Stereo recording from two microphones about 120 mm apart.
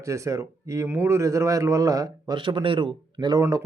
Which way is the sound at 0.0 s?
25° right (ahead or behind).